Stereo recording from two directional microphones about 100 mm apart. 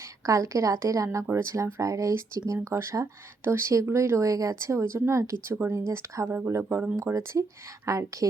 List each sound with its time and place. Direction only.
0.3 s a woman's voice: 30° right (ahead or behind)